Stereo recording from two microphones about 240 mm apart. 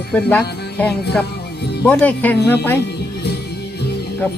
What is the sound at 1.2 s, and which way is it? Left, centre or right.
Music, left.